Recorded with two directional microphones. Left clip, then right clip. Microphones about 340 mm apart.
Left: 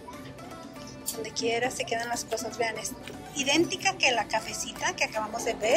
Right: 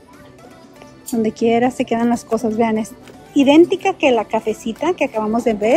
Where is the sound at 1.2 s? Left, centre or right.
Centre.